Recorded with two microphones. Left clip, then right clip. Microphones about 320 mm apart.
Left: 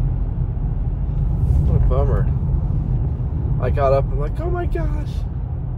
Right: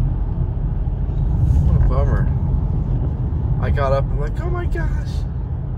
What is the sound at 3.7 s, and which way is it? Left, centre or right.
Speech, centre.